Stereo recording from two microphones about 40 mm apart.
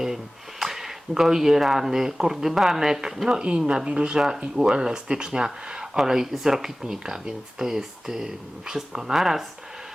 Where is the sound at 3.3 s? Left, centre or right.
Right.